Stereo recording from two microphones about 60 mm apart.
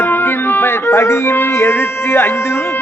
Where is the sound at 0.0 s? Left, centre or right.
Left.